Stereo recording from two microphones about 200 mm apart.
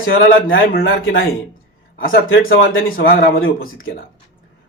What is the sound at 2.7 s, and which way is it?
Speech, 85° left.